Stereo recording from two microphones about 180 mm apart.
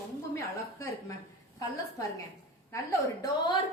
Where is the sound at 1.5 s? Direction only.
20° left (ahead or behind).